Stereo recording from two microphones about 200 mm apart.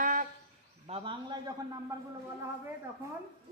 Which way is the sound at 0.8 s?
30° right (ahead or behind).